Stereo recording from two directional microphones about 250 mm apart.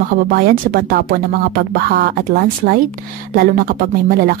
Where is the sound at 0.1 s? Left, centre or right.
Right.